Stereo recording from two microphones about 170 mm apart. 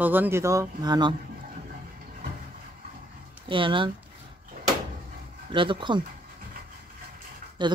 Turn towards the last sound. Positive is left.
turn(degrees=-25)  # may be behind; listen again after turning